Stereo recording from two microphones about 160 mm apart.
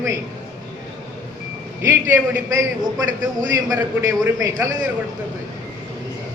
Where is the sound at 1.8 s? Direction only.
15° right (ahead or behind).